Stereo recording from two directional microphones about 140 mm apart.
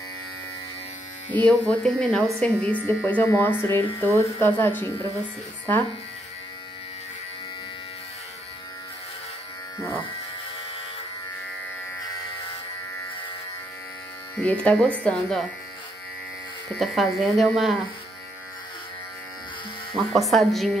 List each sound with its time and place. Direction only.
1.3 s speech: 10° left (ahead or behind)
9.8 s speech: 20° left (ahead or behind)
14.4 s speech: 10° left (ahead or behind)
16.7 s speech: centre (ahead or behind)
20.0 s speech: centre (ahead or behind)